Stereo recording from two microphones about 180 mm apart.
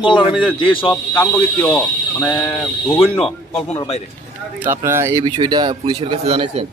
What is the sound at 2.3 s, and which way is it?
A man's voice, 25° left (ahead or behind).